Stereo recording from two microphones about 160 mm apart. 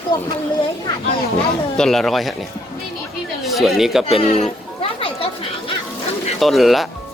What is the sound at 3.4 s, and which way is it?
Speech, centre (ahead or behind).